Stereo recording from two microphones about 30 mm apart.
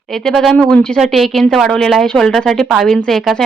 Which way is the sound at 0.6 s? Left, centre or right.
Left.